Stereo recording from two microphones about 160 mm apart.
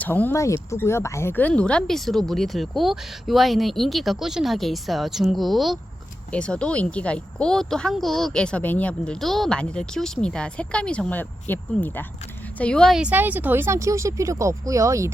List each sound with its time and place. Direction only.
0.0 s speech: 10° left (ahead or behind); by 15.1 s 20° right (ahead or behind)